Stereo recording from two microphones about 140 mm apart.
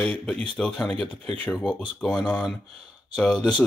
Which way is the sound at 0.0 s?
10° left (ahead or behind).